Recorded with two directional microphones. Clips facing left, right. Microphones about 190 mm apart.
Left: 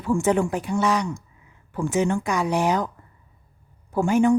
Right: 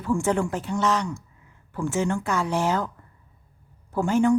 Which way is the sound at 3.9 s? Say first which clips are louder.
Left 2 dB; 15° left (ahead or behind).